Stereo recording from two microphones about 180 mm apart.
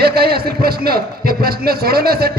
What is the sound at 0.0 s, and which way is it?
A man's voice, 60° right (ahead or behind).